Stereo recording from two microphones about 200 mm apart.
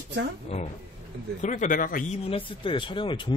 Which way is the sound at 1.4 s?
40° left (ahead or behind).